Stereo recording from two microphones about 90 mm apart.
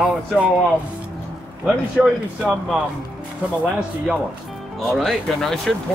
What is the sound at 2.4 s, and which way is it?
Speech, 5° right (ahead or behind).